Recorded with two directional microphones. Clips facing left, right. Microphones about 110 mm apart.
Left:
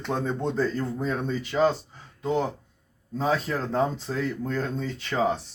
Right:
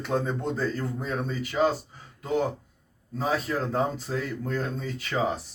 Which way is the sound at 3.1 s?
5° right (ahead or behind).